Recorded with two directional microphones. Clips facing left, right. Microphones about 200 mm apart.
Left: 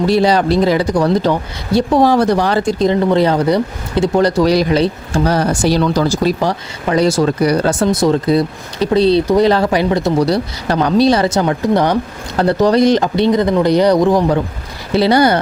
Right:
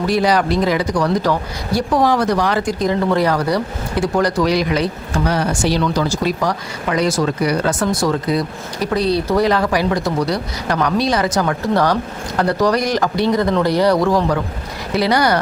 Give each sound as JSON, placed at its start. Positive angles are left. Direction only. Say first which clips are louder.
{"t": 0.0, "sound": "speech", "louder": "left 4 dB", "side_deg": 30}